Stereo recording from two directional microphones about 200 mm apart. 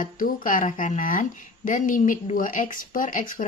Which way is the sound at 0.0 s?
45° left (ahead or behind).